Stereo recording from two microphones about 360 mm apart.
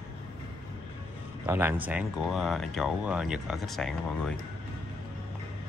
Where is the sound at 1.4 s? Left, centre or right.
Centre.